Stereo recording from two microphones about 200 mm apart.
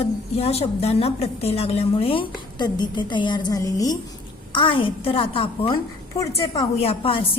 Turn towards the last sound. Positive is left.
turn(degrees=30)  # may be behind; listen again after turning